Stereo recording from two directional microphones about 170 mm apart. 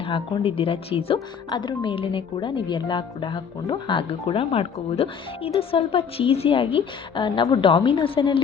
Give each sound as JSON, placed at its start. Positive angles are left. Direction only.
{"t": 0.0, "sound": "speech", "side_deg": 30}